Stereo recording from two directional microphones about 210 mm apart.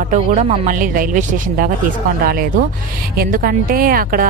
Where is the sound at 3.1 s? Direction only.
45° right (ahead or behind).